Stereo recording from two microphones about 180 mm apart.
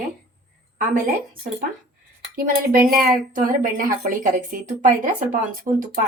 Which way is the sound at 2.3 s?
50° right (ahead or behind).